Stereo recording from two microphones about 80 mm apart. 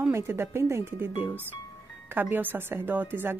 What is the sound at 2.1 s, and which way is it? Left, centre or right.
Speech, right.